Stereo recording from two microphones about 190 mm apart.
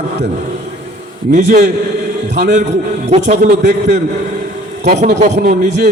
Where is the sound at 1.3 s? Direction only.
40° right (ahead or behind).